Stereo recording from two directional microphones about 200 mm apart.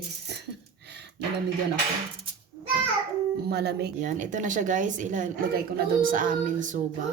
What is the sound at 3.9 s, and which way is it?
A woman's voice, 40° right (ahead or behind).